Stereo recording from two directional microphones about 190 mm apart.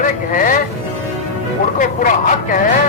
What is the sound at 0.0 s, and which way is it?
Speech, 45° left (ahead or behind).